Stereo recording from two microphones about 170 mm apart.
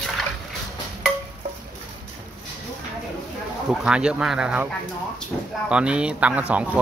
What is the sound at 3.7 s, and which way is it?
Speech, 5° right (ahead or behind).